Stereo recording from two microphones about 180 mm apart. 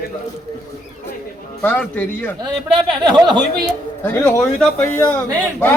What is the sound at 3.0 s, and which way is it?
Speech, 25° right (ahead or behind).